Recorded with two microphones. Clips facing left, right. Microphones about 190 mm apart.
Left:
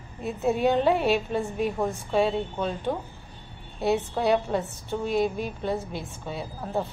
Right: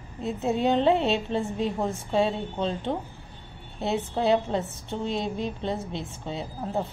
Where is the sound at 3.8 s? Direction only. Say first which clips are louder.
Left 1 dB; 20° right (ahead or behind).